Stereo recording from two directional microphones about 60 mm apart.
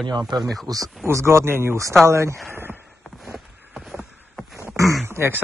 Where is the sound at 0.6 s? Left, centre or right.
Right.